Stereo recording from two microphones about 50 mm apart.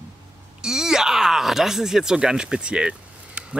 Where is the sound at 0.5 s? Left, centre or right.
Centre.